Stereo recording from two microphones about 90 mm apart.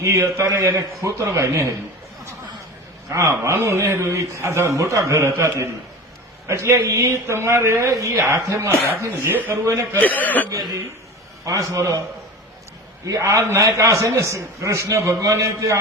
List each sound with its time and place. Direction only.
0.0 s a man's voice: 30° right (ahead or behind)
3.1 s a man's voice: 35° right (ahead or behind)
10.0 s speech: 20° left (ahead or behind)
11.4 s a man's voice: 40° right (ahead or behind)
13.1 s a man's voice: 40° right (ahead or behind)